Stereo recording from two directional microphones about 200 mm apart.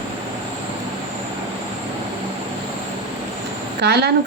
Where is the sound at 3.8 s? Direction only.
55° right (ahead or behind).